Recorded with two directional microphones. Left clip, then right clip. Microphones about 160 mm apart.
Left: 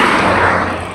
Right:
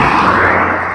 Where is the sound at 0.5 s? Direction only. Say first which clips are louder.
Right 4 dB; 30° right (ahead or behind).